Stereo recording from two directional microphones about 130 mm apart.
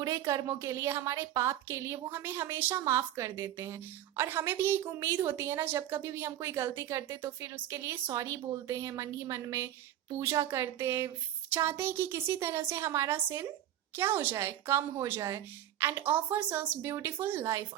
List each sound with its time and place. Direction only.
0.0 s a woman's voice: 25° right (ahead or behind)